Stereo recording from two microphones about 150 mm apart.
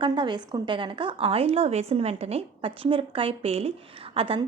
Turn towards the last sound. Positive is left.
turn(degrees=-35)  # may be behind; listen again after turning